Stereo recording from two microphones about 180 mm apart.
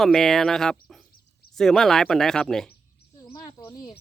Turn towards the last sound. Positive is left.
turn(degrees=20)  # may be behind; listen again after turning